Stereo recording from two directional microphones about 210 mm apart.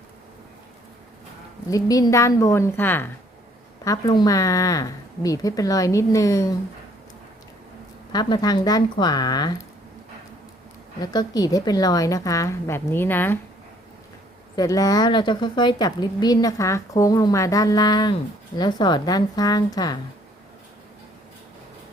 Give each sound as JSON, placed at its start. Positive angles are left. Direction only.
{"t": 1.6, "sound": "a woman's voice", "side_deg": 15}
{"t": 8.1, "sound": "a woman's voice", "side_deg": 20}
{"t": 11.0, "sound": "a woman's voice", "side_deg": 20}
{"t": 14.5, "sound": "a woman's voice", "side_deg": 15}